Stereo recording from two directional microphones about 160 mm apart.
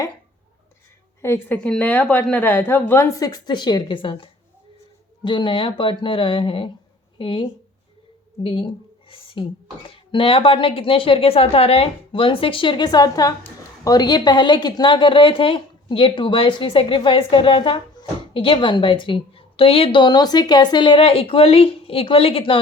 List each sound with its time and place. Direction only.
1.2 s a woman's voice: 15° left (ahead or behind); by 7.4 s 30° left (ahead or behind)
8.4 s a woman's voice: 35° left (ahead or behind)